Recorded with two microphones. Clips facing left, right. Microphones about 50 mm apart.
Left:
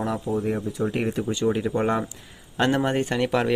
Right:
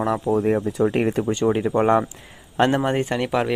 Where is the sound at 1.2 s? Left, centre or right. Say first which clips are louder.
Right 4 dB; right.